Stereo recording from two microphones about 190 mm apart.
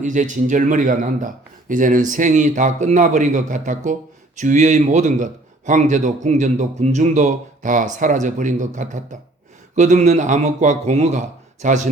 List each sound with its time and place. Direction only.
0.0 s speech: 40° right (ahead or behind)